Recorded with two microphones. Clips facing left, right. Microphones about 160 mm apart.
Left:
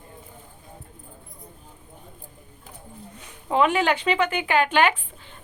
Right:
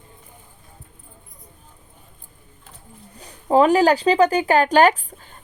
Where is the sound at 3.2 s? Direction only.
35° right (ahead or behind).